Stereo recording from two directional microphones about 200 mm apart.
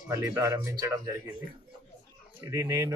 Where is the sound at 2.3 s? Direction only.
15° right (ahead or behind).